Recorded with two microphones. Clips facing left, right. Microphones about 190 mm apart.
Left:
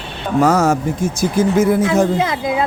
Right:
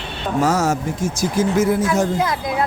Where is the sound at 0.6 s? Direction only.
60° left (ahead or behind).